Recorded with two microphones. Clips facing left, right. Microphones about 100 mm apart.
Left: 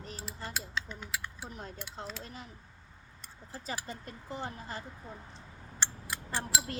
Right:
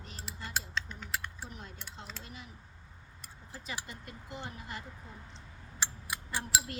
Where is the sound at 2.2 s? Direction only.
40° left (ahead or behind).